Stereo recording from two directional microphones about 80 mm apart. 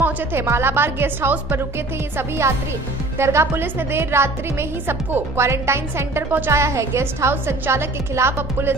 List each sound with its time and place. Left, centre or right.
0.0 s a woman's voice: right